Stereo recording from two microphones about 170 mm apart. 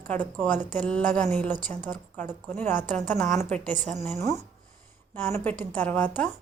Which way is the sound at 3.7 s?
45° right (ahead or behind).